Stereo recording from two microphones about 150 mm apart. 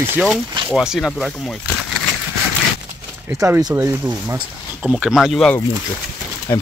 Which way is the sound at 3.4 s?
20° right (ahead or behind).